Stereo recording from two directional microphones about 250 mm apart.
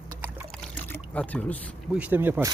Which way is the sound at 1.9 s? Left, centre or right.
Centre.